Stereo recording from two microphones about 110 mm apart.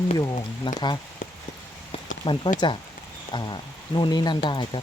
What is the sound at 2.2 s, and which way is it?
Speech, 45° left (ahead or behind).